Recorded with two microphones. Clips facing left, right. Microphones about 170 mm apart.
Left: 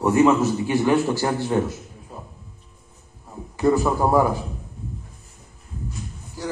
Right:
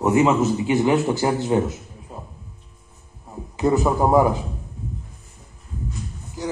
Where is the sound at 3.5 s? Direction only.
20° right (ahead or behind).